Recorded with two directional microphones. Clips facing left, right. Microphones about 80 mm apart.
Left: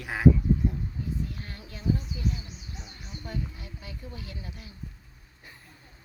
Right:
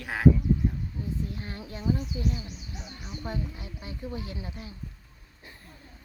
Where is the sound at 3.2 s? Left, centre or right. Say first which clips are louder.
Right 2 dB; right.